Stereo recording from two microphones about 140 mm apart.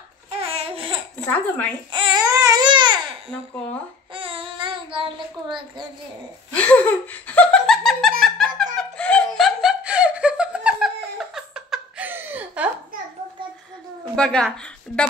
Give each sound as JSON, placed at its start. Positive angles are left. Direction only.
{"t": 0.3, "sound": "a sound", "side_deg": -45}
{"t": 1.1, "sound": "speech", "side_deg": 10}
{"t": 1.9, "sound": "baby cry", "side_deg": -35}
{"t": 4.1, "sound": "child singing", "side_deg": -40}
{"t": 6.5, "sound": "laughter", "side_deg": 10}
{"t": 8.2, "sound": "giggle", "side_deg": 0}
{"t": 8.7, "sound": "laughter", "side_deg": 5}
{"t": 14.1, "sound": "a woman's voice", "side_deg": 5}